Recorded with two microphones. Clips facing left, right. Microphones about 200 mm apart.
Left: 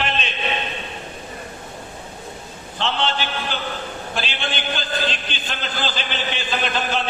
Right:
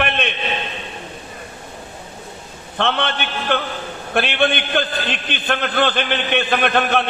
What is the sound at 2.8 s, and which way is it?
A man's voice, 60° right (ahead or behind).